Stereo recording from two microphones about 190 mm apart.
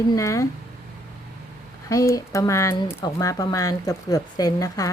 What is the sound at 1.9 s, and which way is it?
Speech, 15° left (ahead or behind).